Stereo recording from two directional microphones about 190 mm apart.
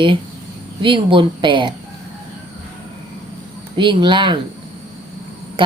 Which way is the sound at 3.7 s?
25° right (ahead or behind).